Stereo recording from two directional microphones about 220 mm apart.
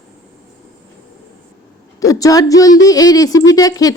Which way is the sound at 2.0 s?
15° left (ahead or behind).